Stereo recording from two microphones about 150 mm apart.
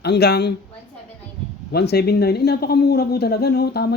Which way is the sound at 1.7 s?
90° left.